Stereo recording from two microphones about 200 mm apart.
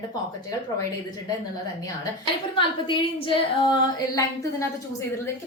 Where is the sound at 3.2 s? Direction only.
25° left (ahead or behind).